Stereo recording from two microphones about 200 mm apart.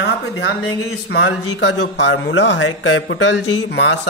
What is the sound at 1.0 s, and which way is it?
Speech, 60° left (ahead or behind).